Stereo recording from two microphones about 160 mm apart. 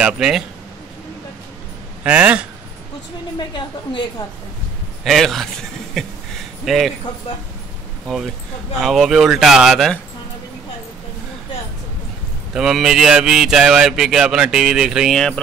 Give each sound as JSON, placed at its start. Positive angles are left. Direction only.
{"t": 0.0, "sound": "speech", "side_deg": -5}
{"t": 2.0, "sound": "speech", "side_deg": -10}
{"t": 3.3, "sound": "a woman's voice", "side_deg": 30}
{"t": 5.0, "sound": "speech", "side_deg": 0}
{"t": 8.7, "sound": "speech", "side_deg": 0}
{"t": 12.5, "sound": "speech", "side_deg": 0}